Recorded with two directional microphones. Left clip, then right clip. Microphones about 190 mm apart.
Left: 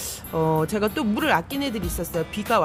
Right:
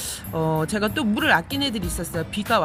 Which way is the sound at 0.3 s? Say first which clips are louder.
Left 2 dB; centre (ahead or behind).